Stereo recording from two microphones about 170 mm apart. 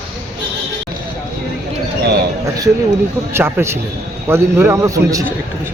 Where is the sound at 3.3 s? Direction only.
15° right (ahead or behind).